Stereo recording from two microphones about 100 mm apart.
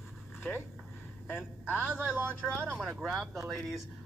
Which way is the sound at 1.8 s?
15° right (ahead or behind).